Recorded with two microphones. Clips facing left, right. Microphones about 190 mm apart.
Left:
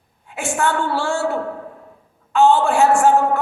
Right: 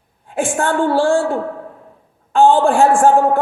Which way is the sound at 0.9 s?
50° right (ahead or behind).